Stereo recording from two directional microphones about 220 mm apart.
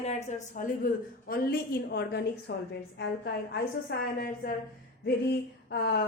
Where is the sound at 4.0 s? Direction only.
40° left (ahead or behind).